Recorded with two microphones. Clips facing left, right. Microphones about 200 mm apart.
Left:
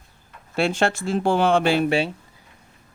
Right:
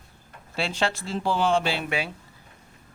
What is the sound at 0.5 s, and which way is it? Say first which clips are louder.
Speech: left 6 dB; 50° left (ahead or behind).